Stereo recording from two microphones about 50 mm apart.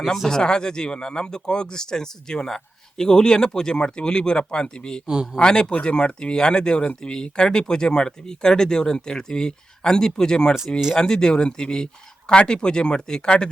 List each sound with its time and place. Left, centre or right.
0.0 s speech: centre
0.3 s speech: centre
5.0 s a man's voice: centre
5.4 s speech: centre